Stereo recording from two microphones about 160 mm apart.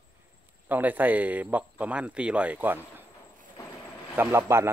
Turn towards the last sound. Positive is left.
turn(degrees=-15)  # may be behind; listen again after turning